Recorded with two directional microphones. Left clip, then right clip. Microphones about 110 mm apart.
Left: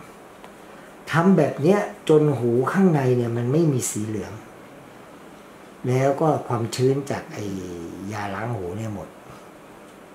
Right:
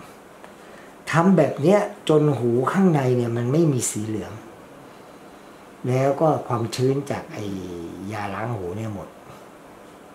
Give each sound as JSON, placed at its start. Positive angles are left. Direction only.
{"t": 1.0, "sound": "speech", "side_deg": -35}
{"t": 5.9, "sound": "speech", "side_deg": -25}